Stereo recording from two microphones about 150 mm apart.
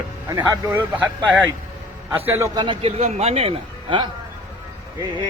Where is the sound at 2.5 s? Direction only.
30° right (ahead or behind).